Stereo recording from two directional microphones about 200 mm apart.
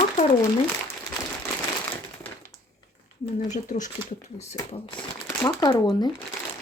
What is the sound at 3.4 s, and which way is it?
Speech, 35° left (ahead or behind).